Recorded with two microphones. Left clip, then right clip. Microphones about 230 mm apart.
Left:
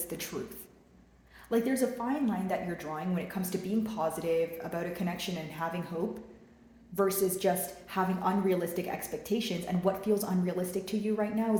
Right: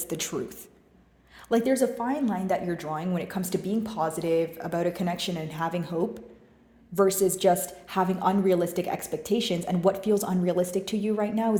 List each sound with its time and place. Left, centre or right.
0.0 s a woman's voice: right
1.5 s a woman's voice: right
6.9 s a woman's voice: right